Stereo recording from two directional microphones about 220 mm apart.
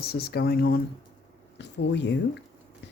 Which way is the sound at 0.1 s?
45° left (ahead or behind).